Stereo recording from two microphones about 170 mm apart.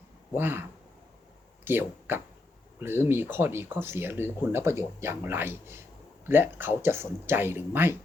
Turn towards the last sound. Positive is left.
turn(degrees=-10)  # may be behind; listen again after turning